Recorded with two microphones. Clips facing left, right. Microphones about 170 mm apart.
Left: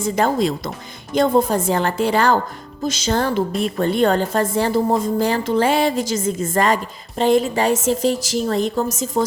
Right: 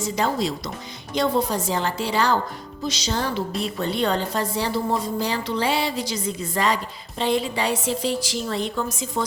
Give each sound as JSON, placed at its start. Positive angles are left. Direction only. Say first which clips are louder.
{"t": 0.0, "sound": "a woman's voice", "louder": "left 5 dB", "side_deg": 55}